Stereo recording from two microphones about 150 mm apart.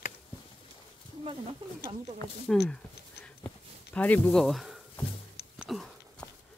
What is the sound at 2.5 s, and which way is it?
Speech, 5° left (ahead or behind).